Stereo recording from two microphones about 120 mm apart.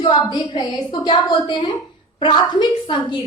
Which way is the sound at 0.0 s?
40° left (ahead or behind).